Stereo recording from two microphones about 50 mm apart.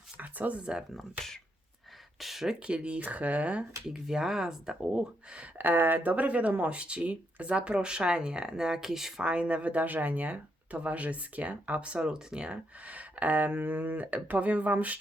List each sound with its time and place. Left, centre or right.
0.2 s a sound: right
0.6 s speech: centre
0.9 s speech: centre
2.2 s speech: centre
2.6 s speech: right
3.8 s speech: centre
5.4 s speech: right; by 9.2 s centre
9.2 s speech: right